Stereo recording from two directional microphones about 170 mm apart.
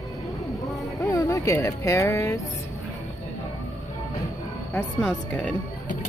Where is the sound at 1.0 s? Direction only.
20° left (ahead or behind).